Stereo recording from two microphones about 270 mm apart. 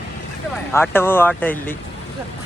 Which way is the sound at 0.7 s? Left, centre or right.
Centre.